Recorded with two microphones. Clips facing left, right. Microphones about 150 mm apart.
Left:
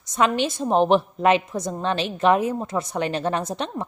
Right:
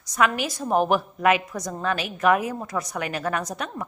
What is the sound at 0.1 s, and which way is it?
A woman's voice, 25° left (ahead or behind).